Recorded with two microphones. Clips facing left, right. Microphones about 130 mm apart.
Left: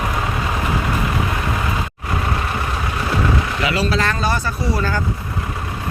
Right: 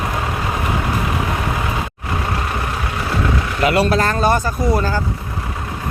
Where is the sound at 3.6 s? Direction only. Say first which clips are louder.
Right 7 dB; 50° right (ahead or behind).